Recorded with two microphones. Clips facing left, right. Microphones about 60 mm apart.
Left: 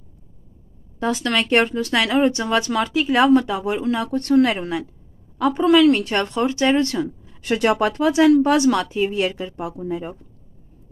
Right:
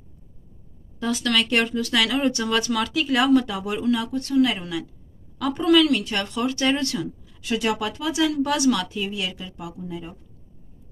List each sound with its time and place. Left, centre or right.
0.9 s speech: left
6.9 s a sound: left
7.4 s speech: left